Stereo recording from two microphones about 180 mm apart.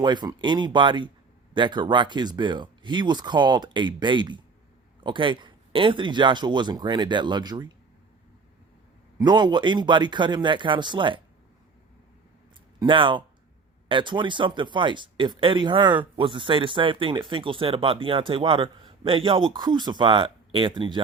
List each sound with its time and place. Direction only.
0.0 s speech: 25° right (ahead or behind)
9.1 s speech: 25° right (ahead or behind)
12.8 s speech: 30° right (ahead or behind)